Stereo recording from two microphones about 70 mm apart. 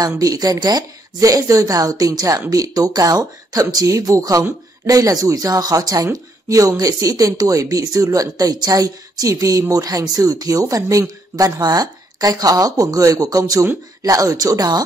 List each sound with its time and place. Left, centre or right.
0.0 s speech: right